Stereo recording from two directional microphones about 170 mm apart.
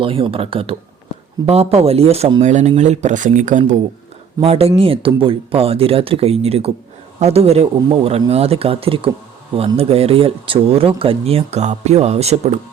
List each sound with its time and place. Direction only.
0.0 s speech: 30° right (ahead or behind); by 3.6 s 45° right (ahead or behind)
4.4 s speech: 35° right (ahead or behind)